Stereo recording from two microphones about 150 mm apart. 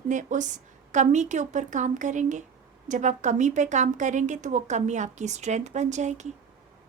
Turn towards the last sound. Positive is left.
turn(degrees=-50)  # may be behind; listen again after turning